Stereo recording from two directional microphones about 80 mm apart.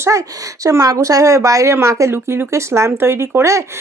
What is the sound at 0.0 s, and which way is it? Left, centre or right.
Speech, right.